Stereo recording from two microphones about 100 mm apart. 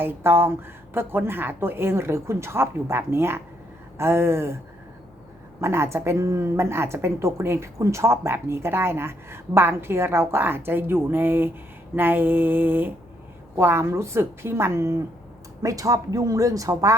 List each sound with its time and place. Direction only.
0.0 s speech: 20° right (ahead or behind)
5.5 s speech: 25° right (ahead or behind)